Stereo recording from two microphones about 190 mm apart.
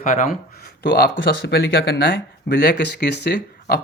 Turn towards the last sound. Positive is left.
turn(degrees=60)  # may be behind; listen again after turning